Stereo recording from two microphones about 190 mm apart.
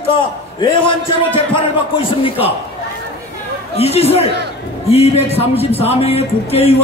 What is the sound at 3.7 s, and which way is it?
Speech, 35° left (ahead or behind).